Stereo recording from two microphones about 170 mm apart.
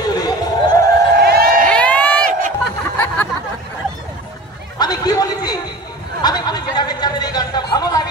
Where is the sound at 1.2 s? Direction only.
65° right (ahead or behind).